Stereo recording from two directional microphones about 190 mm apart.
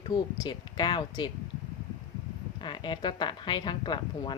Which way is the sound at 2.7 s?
25° left (ahead or behind).